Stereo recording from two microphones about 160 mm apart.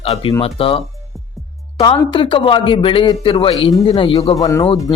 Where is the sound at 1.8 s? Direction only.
30° left (ahead or behind).